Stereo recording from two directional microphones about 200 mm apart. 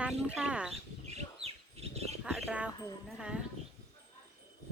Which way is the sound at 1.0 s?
30° right (ahead or behind).